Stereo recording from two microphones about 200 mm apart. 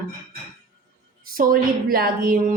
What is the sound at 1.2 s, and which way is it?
A woman's voice, 45° right (ahead or behind).